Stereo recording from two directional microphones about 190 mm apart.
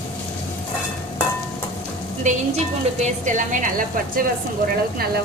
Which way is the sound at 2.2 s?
35° right (ahead or behind).